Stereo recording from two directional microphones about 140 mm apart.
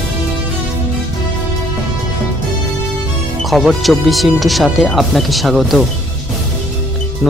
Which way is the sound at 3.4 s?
Centre (ahead or behind).